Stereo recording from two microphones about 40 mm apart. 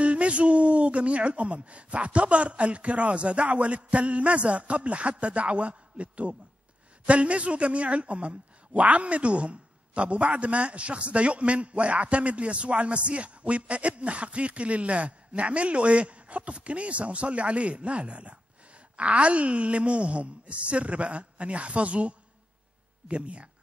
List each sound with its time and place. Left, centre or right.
0.0 s a woman's voice: right